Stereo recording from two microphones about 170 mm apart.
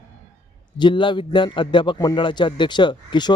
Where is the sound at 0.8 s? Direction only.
30° left (ahead or behind).